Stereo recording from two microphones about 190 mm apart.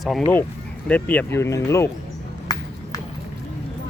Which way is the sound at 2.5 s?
20° left (ahead or behind).